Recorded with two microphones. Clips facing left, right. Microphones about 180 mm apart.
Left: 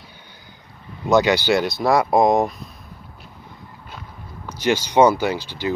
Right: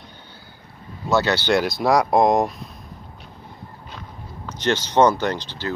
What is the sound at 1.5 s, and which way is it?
Speech, centre (ahead or behind).